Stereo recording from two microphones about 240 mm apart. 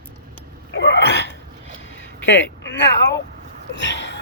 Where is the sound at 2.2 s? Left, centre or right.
Left.